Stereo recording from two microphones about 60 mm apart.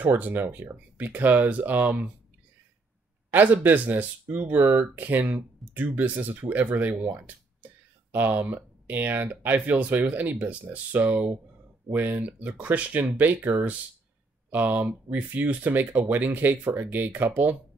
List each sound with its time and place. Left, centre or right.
0.0 s speech: right
3.5 s speech: right